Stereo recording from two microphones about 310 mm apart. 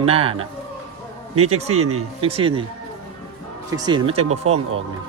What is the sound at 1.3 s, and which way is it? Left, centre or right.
Speech, right.